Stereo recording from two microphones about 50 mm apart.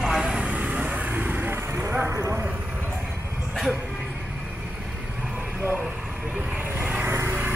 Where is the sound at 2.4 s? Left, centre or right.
Right.